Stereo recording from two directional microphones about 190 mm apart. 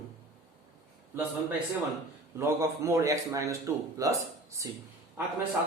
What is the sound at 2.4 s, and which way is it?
Speech, 15° right (ahead or behind).